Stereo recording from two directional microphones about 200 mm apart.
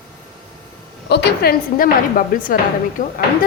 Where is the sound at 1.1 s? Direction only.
55° left (ahead or behind).